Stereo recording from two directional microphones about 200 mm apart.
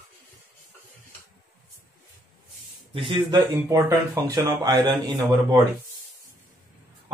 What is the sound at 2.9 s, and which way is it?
Speech, 25° right (ahead or behind).